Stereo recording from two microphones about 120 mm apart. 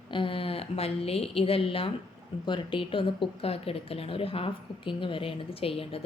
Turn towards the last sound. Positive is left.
turn(degrees=55)  # may be behind; listen again after turning